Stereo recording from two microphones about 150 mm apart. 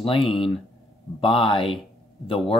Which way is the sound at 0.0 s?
40° left (ahead or behind).